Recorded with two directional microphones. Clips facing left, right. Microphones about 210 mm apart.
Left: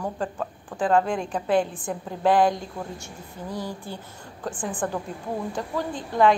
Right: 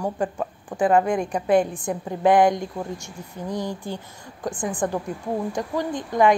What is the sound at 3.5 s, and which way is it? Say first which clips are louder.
A woman's voice: right 4 dB; 15° right (ahead or behind).